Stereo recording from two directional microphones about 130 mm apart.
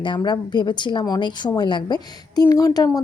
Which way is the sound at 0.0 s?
35° left (ahead or behind).